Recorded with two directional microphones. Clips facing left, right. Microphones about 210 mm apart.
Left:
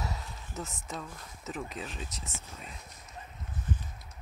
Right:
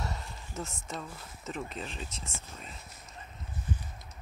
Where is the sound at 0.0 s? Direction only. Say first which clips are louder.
Even; centre (ahead or behind).